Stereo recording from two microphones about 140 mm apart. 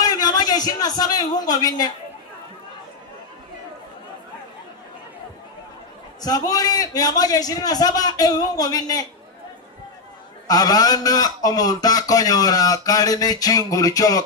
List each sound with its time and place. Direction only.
0.0 s a man's voice: 25° left (ahead or behind)
6.2 s a man's voice: 25° left (ahead or behind)
10.5 s a man's voice: 25° left (ahead or behind)